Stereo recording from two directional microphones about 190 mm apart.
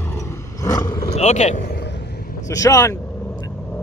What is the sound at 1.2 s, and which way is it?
Speech, 35° left (ahead or behind).